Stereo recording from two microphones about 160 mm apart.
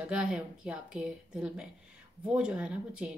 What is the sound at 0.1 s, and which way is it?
A woman's voice, 5° right (ahead or behind).